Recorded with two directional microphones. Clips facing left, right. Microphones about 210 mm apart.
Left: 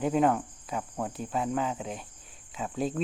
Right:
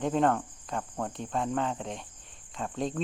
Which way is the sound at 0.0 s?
5° left (ahead or behind).